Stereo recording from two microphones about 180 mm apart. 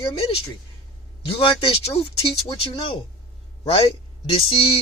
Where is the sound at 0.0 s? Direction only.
30° left (ahead or behind).